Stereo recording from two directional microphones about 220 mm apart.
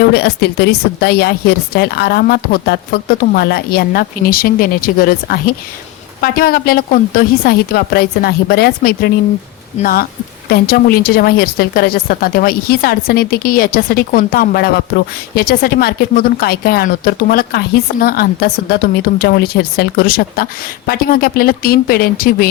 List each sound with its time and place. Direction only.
0.1 s a woman's voice: 50° left (ahead or behind)